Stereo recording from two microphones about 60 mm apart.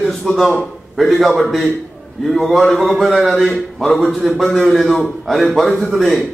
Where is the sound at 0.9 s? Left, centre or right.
Centre.